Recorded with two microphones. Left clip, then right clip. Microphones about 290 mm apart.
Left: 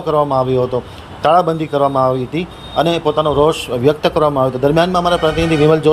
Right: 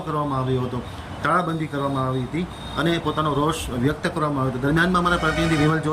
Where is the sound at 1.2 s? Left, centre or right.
Left.